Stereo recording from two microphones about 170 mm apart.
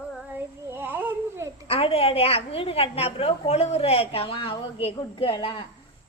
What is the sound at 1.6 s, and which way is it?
A woman's voice, 35° left (ahead or behind).